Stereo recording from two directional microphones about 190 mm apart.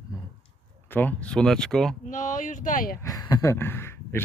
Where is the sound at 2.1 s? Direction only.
45° left (ahead or behind).